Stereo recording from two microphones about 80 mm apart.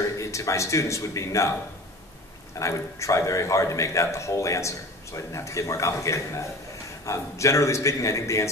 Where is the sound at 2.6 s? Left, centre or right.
Left.